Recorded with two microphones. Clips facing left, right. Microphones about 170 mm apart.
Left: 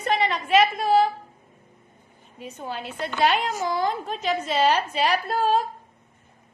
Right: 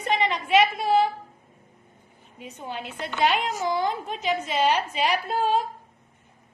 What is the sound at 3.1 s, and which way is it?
A woman's voice, 15° right (ahead or behind).